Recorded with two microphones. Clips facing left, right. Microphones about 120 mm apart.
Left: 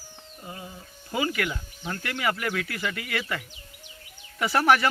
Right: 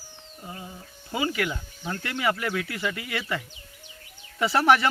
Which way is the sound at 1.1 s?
20° right (ahead or behind).